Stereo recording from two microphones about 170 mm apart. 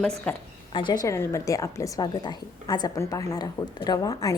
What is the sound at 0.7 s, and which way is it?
A woman's voice, 30° left (ahead or behind).